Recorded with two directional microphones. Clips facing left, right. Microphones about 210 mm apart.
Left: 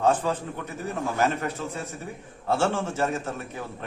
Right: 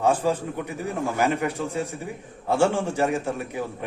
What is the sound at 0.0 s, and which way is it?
A man's voice, 10° right (ahead or behind).